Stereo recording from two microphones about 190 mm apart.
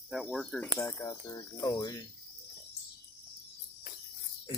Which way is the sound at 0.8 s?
15° left (ahead or behind).